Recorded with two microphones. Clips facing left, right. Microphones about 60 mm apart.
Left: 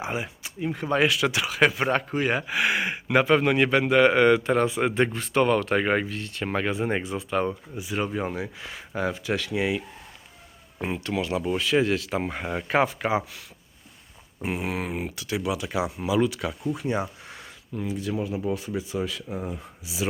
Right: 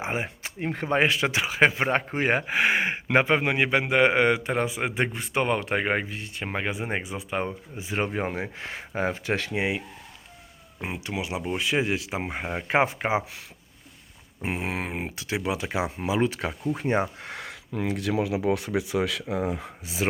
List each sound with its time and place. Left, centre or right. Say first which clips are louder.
0.0 s speech: right 1 dB; right
0.6 s speech: left 1 dB; right
0.9 s speech: even; right
7.8 s speech: right 1 dB; right
9.6 s speech: left 4 dB; right
10.8 s speech: left 4 dB; centre
14.4 s speech: left 1 dB; right
17.2 s speech: right 5 dB; right
19.8 s speech: even; right